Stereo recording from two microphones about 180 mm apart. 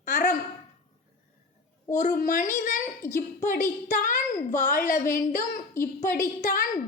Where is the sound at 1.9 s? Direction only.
45° left (ahead or behind).